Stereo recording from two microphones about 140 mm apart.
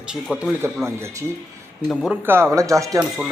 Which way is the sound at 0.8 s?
20° right (ahead or behind).